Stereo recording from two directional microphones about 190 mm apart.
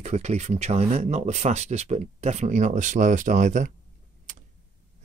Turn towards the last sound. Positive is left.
turn(degrees=-40)  # may be behind; listen again after turning